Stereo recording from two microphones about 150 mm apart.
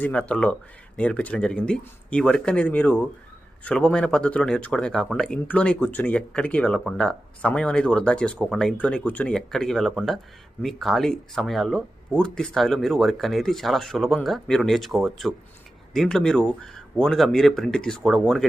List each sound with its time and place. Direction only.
0.0 s speech: 10° left (ahead or behind)